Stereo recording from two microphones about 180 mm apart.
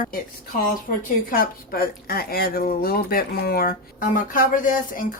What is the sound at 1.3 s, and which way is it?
Speech, 55° left (ahead or behind).